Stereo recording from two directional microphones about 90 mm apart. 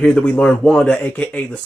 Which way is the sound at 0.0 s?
15° left (ahead or behind).